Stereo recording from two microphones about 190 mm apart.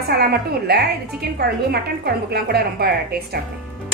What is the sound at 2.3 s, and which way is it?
Speech, 55° right (ahead or behind).